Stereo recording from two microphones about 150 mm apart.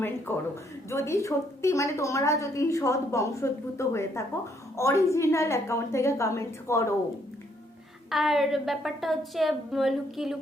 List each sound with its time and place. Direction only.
0.9 s a woman's voice: 20° left (ahead or behind)
8.1 s a woman's voice: centre (ahead or behind)